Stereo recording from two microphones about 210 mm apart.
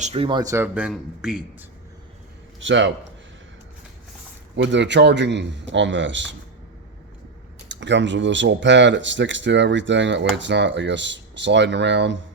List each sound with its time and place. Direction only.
0.0 s speech: 25° right (ahead or behind); by 1.5 s 5° right (ahead or behind)
2.6 s speech: 60° right (ahead or behind)
4.5 s speech: 55° right (ahead or behind)
7.7 s speech: 60° right (ahead or behind)